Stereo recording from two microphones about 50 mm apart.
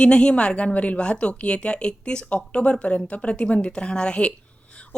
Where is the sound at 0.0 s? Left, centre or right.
Centre.